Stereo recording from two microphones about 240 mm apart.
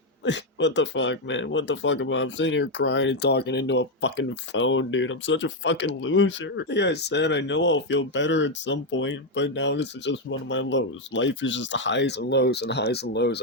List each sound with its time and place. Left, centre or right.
0.3 s speech: left